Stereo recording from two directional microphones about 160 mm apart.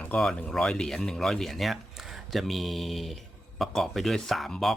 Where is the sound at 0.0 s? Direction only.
5° left (ahead or behind).